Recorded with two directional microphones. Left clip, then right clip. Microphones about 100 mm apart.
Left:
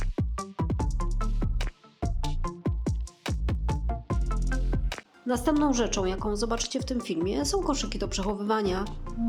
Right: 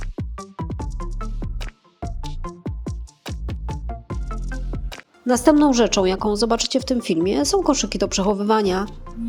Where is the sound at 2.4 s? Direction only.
15° right (ahead or behind).